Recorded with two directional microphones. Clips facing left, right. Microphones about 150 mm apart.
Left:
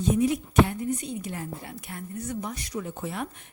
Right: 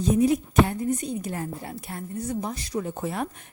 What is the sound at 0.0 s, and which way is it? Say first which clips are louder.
A woman's voice: right 3 dB; 40° right (ahead or behind).